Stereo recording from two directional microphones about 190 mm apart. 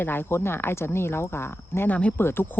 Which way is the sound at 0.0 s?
10° left (ahead or behind).